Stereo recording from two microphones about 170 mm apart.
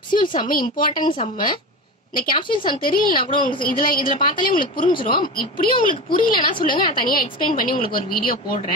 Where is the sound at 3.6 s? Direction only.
55° left (ahead or behind).